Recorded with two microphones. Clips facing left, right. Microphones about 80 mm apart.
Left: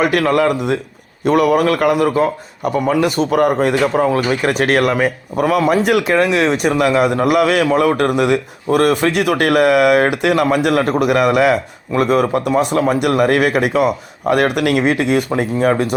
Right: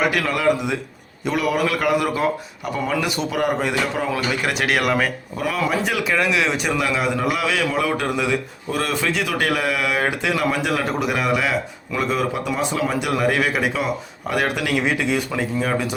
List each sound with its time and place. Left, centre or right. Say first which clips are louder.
0.1 s speech: left 5 dB; left
4.9 s speech: left 4 dB; left
5.4 s speech: left 8 dB; left
6.1 s speech: left 6 dB; left